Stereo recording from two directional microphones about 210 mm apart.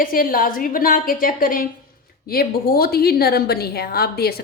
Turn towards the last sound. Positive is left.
turn(degrees=50)  # may be behind; listen again after turning